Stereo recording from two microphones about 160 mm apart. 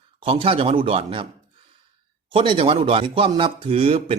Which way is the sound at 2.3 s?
35° right (ahead or behind).